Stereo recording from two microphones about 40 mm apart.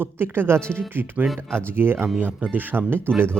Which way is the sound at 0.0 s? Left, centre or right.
Right.